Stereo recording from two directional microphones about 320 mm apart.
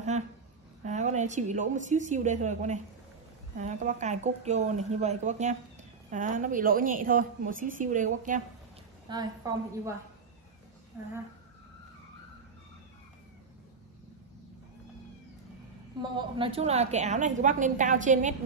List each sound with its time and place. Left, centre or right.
0.8 s a woman's voice: right
9.1 s a woman's voice: centre
16.0 s a woman's voice: centre